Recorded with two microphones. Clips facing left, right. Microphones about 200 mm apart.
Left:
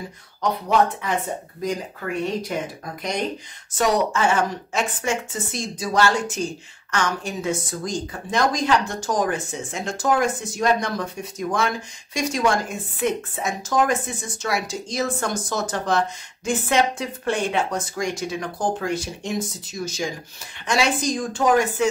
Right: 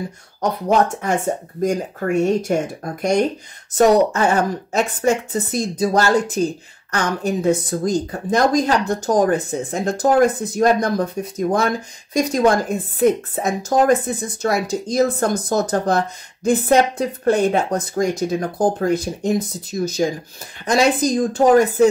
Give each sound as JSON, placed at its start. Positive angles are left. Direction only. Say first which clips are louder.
{"t": 0.4, "sound": "speech", "louder": "right 3 dB", "side_deg": -45}